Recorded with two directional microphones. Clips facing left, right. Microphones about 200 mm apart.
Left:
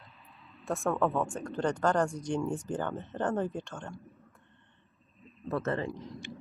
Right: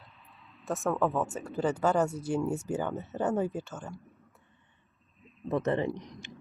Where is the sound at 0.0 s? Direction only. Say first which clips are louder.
Left 1 dB; centre (ahead or behind).